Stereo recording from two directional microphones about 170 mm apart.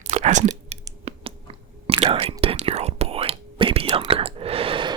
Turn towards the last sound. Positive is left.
turn(degrees=-30)  # may be behind; listen again after turning